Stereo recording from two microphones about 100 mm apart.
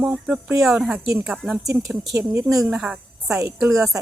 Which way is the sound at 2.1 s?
30° right (ahead or behind).